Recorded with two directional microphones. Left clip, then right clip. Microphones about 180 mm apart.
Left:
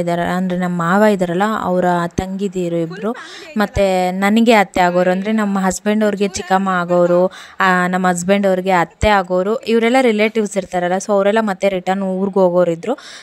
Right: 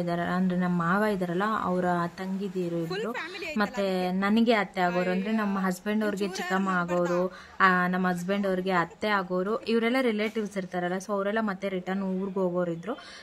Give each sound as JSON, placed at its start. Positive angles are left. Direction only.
{"t": 0.0, "sound": "speech", "side_deg": 45}